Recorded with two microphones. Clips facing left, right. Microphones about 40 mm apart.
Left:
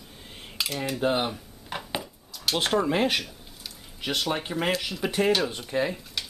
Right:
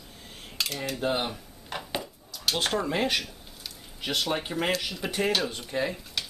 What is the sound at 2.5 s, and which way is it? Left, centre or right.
Speech, centre.